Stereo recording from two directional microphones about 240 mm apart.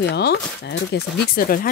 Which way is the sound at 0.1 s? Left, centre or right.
Left.